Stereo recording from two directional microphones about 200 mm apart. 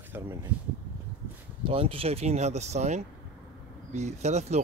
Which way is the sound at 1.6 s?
25° right (ahead or behind).